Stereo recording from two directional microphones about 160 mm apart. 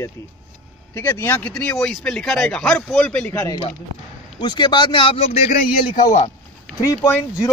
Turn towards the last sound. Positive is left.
turn(degrees=20)  # may be behind; listen again after turning